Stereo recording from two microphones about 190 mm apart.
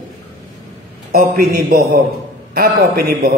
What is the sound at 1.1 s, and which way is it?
A man's voice, 50° right (ahead or behind).